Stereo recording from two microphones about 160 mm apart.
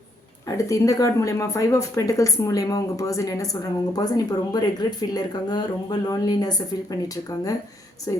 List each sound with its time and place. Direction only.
0.4 s speech: 20° left (ahead or behind)